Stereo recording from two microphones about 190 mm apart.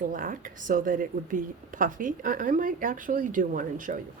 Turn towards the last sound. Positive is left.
turn(degrees=-45)  # may be behind; listen again after turning